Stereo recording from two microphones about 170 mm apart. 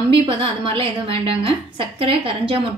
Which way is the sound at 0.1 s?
30° right (ahead or behind).